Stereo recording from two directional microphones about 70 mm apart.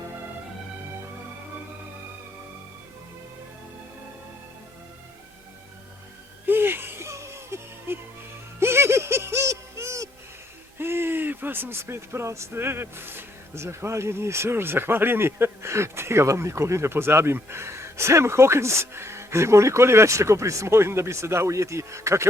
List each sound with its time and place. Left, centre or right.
6.4 s music: right
10.8 s speech: right